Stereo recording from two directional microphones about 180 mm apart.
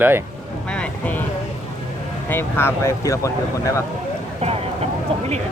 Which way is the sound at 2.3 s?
15° left (ahead or behind).